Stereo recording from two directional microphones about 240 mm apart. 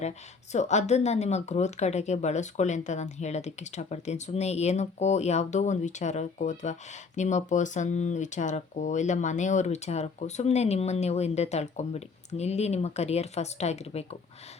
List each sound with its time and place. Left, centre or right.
0.5 s speech: left